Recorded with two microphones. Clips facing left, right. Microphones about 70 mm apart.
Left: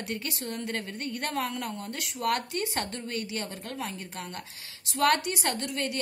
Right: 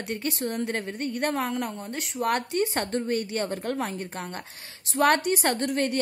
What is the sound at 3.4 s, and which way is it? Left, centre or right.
Speech, right.